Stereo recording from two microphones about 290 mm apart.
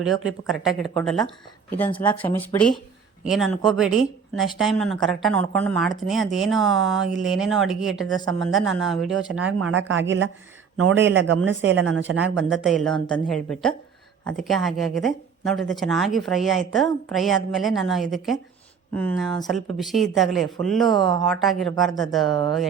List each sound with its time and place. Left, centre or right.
0.0 s speech: centre
9.5 s speech: right
12.5 s speech: centre
21.0 s speech: centre
21.2 s speech: centre
22.3 s speech: centre